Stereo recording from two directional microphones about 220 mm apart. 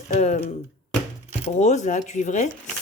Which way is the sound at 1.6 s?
30° left (ahead or behind).